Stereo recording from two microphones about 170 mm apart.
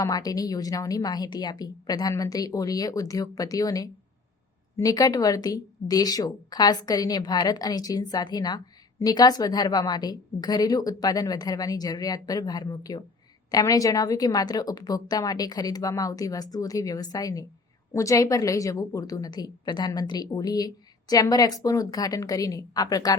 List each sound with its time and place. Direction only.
0.0 s a woman's voice: 20° left (ahead or behind)